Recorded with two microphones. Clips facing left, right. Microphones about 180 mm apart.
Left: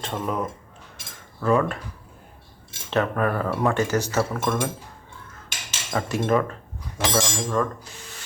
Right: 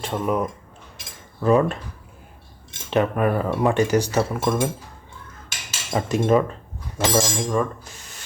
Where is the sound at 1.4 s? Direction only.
20° right (ahead or behind).